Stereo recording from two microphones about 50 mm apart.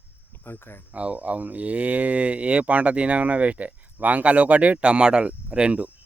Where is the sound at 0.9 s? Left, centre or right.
Right.